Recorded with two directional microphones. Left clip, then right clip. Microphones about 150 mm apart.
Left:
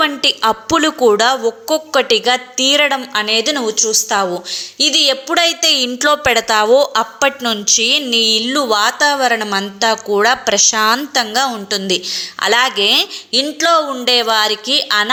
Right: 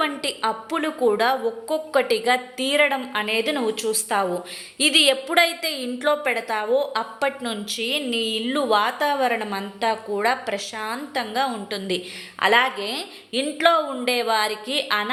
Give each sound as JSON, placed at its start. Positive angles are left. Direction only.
{"t": 0.0, "sound": "a woman's voice", "side_deg": 30}
{"t": 12.7, "sound": "speech", "side_deg": 35}
{"t": 13.4, "sound": "a woman's voice", "side_deg": 20}